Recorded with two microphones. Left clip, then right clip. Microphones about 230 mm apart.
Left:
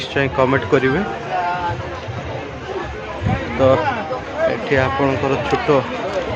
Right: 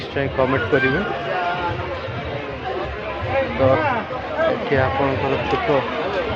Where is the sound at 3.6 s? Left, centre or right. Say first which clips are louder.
Left 4 dB; left.